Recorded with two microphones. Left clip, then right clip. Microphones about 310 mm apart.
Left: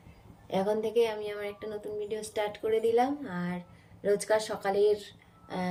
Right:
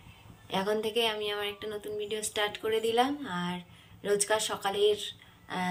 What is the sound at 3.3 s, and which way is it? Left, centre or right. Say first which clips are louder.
Speech: right 3 dB; right.